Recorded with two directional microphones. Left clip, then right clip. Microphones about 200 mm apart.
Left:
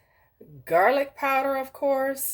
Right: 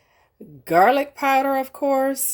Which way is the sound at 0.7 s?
45° right (ahead or behind).